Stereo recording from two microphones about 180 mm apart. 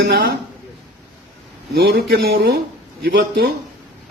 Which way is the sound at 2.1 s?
60° right (ahead or behind).